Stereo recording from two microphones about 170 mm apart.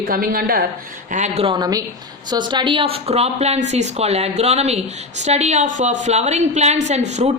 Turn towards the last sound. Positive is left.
turn(degrees=-40)  # may be behind; listen again after turning